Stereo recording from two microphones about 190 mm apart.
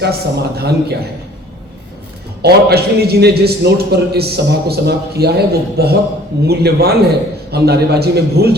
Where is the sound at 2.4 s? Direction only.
55° right (ahead or behind).